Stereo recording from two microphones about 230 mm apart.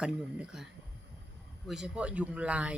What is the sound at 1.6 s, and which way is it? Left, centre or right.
Speech, centre.